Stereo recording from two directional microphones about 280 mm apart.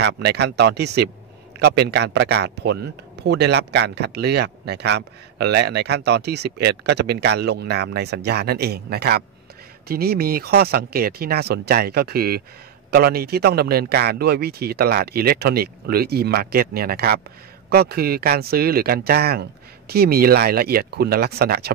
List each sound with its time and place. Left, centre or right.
0.0 s a man's voice: right